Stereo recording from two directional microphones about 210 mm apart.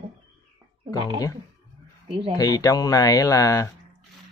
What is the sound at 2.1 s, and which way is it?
Speech, 25° right (ahead or behind).